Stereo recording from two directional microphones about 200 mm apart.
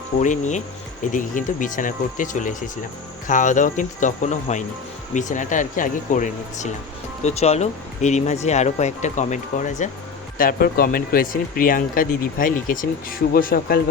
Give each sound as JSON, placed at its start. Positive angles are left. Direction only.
{"t": 0.2, "sound": "speech", "side_deg": 35}